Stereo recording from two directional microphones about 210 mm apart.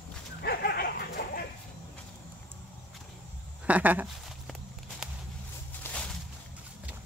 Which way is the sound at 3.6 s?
5° right (ahead or behind).